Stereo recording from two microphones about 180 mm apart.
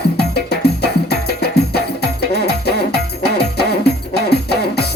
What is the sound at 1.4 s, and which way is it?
Music, 65° left (ahead or behind).